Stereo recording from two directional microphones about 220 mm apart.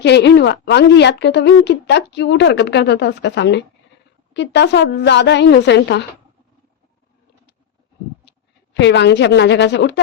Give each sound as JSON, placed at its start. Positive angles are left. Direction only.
{"t": 0.0, "sound": "a woman's voice", "side_deg": 50}
{"t": 8.2, "sound": "speech", "side_deg": 50}